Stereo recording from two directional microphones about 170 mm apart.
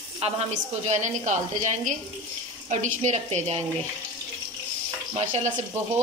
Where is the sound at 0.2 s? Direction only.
35° right (ahead or behind).